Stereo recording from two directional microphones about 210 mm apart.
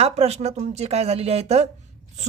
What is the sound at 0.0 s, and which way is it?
A woman's voice, 30° right (ahead or behind).